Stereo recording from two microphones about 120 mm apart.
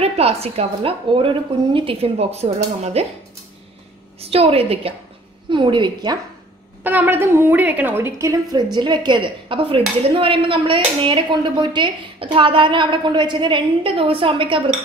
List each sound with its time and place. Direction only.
0.0 s a woman's voice: 55° right (ahead or behind)
4.2 s a woman's voice: 55° right (ahead or behind)
5.5 s a woman's voice: 40° right (ahead or behind)
6.8 s a woman's voice: 15° right (ahead or behind); by 14.6 s 45° right (ahead or behind)